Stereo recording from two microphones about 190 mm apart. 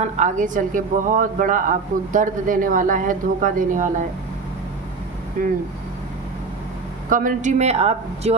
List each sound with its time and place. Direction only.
0.0 s a woman's voice: 40° right (ahead or behind)
7.1 s speech: 45° right (ahead or behind)